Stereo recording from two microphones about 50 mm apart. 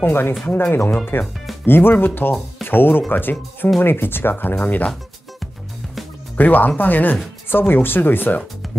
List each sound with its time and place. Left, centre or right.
0.0 s speech: left
6.3 s speech: left